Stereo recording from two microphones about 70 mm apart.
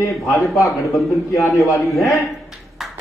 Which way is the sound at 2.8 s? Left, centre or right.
Centre.